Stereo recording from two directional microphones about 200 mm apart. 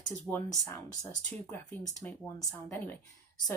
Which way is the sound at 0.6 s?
20° left (ahead or behind).